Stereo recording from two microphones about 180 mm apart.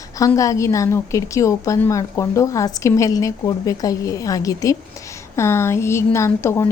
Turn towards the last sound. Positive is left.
turn(degrees=15)  # may be behind; listen again after turning